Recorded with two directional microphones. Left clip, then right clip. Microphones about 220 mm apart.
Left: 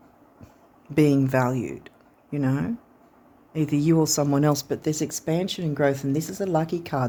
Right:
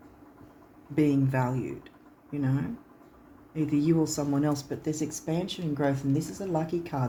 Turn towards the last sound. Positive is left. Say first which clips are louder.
# left 5 dB
turn(degrees=50)  # may be behind; listen again after turning